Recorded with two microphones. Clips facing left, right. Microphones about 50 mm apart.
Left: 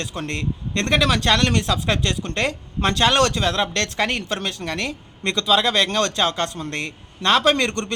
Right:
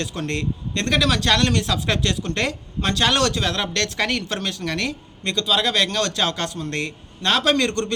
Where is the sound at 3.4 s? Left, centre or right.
Left.